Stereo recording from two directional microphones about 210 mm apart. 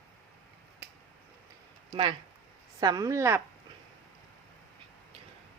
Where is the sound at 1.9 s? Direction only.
25° right (ahead or behind).